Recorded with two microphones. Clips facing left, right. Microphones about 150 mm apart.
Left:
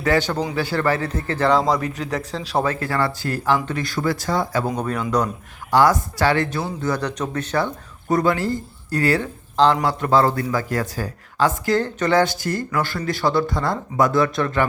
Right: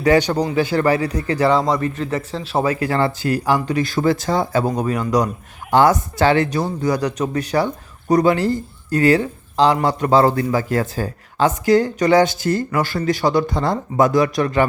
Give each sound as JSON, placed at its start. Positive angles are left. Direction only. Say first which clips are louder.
{"t": 0.0, "sound": "speech", "louder": "right 5 dB", "side_deg": -20}
{"t": 4.8, "sound": "speech", "louder": "right 4 dB", "side_deg": -10}
{"t": 5.7, "sound": "speech", "louder": "right 2 dB", "side_deg": -20}